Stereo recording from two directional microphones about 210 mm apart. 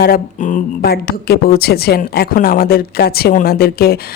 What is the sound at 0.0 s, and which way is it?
A woman's voice, 40° left (ahead or behind).